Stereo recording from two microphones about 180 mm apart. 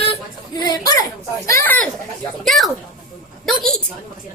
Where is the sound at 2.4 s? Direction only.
Centre (ahead or behind).